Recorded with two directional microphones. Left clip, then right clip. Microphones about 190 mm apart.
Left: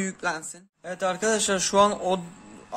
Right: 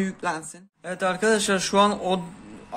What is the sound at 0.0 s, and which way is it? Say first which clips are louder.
A man's voice: right 1 dB; 10° left (ahead or behind).